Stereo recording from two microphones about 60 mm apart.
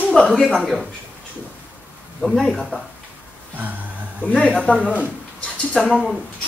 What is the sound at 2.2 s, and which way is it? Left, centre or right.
Speech, centre.